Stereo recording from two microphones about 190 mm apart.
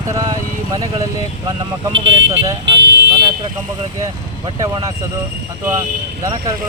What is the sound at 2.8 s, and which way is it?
Car alarm, 60° right (ahead or behind).